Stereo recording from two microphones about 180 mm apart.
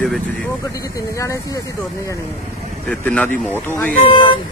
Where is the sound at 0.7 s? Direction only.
15° left (ahead or behind).